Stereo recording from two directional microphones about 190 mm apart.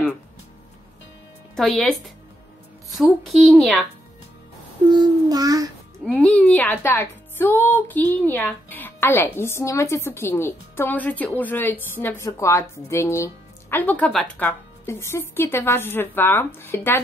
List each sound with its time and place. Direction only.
1.8 s a woman's voice: centre (ahead or behind)
4.8 s child singing: 20° right (ahead or behind)
6.2 s speech: 5° left (ahead or behind)